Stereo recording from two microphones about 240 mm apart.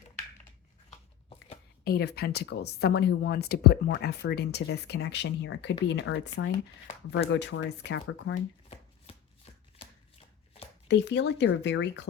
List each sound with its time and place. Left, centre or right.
0.9 s a sound: left
1.8 s speech: left
8.4 s shuffling cards: left
10.8 s speech: left